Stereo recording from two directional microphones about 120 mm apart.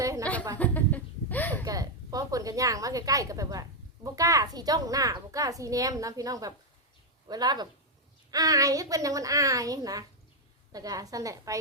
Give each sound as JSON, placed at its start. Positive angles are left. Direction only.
{"t": 0.0, "sound": "a sound", "side_deg": -30}
{"t": 0.6, "sound": "laughter", "side_deg": 15}
{"t": 1.6, "sound": "a woman's voice", "side_deg": -30}